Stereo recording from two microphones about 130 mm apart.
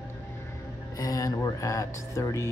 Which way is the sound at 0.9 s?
30° left (ahead or behind).